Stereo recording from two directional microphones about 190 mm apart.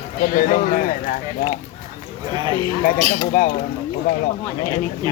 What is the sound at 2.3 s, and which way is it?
Speech, 25° right (ahead or behind).